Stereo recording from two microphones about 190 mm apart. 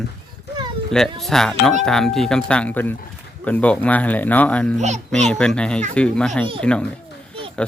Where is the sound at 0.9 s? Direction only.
Centre (ahead or behind).